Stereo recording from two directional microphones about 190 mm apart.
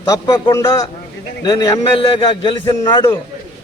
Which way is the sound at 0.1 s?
20° left (ahead or behind).